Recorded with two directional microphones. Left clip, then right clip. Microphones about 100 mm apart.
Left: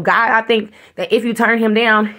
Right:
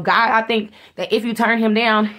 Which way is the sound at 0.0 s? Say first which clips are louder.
Left 2 dB; 30° left (ahead or behind).